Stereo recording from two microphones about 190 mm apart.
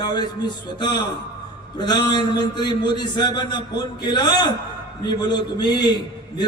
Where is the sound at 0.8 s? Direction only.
20° left (ahead or behind).